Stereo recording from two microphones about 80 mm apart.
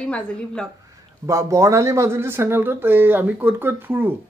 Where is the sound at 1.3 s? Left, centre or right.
Right.